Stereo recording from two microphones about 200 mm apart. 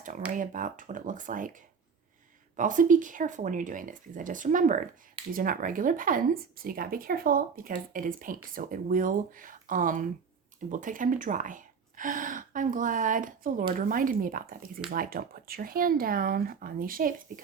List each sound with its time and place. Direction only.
0.3 s speech: 40° right (ahead or behind)
2.6 s a woman's voice: 40° right (ahead or behind)